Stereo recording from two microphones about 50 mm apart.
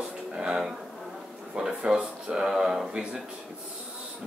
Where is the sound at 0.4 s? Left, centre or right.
Centre.